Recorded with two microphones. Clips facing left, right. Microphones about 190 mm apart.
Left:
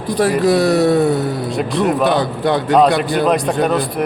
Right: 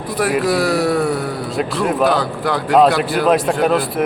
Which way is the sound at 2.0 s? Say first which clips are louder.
Left 2 dB; 20° left (ahead or behind).